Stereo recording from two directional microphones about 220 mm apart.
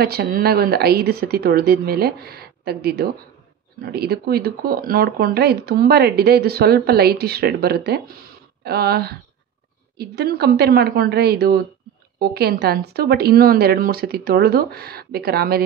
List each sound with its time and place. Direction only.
0.0 s speech: 45° right (ahead or behind)